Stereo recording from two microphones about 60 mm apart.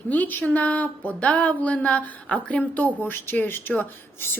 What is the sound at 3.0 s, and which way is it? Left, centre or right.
A woman's voice, left.